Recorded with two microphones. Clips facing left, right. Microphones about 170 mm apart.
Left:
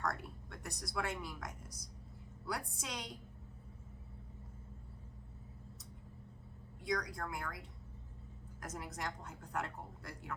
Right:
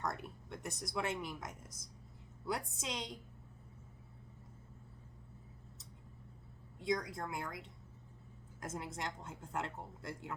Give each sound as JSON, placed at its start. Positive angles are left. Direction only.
{"t": 0.0, "sound": "a woman's voice", "side_deg": -20}
{"t": 6.7, "sound": "a woman's voice", "side_deg": -25}
{"t": 8.6, "sound": "a woman's voice", "side_deg": -25}